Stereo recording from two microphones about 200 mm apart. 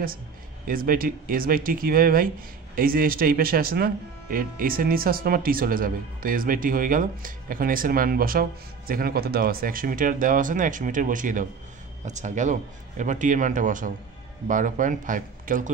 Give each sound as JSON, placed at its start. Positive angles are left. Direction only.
{"t": 0.7, "sound": "speech", "side_deg": -45}